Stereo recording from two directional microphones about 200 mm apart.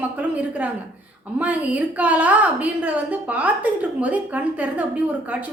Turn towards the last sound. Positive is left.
turn(degrees=-5)  # may be behind; listen again after turning